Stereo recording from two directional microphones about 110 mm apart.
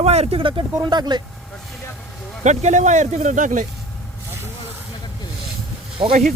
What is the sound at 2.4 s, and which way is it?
Speech, 90° right.